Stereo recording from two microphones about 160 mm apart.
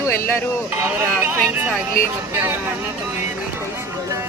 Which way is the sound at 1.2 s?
15° right (ahead or behind).